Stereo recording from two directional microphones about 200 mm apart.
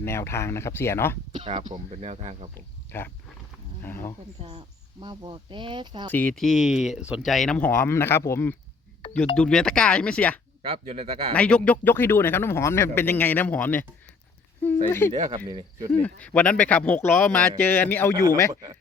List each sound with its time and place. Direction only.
0.0 s speech: 15° left (ahead or behind)
1.3 s speech: 25° right (ahead or behind)
2.6 s speech: 10° left (ahead or behind)
4.4 s speech: 30° right (ahead or behind)
6.1 s speech: 5° left (ahead or behind)
10.7 s speech: 30° right (ahead or behind)
11.3 s speech: 5° left (ahead or behind)
14.8 s speech: 10° left (ahead or behind)
15.4 s speech: 20° right (ahead or behind)
15.9 s speech: 10° left (ahead or behind)